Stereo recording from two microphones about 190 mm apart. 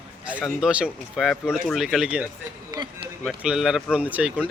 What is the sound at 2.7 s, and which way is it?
Speech, 20° right (ahead or behind).